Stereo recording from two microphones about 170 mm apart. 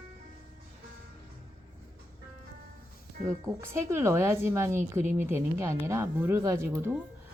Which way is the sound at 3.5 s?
15° right (ahead or behind).